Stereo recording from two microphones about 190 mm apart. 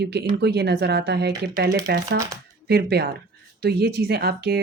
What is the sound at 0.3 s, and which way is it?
Speech, 60° right (ahead or behind).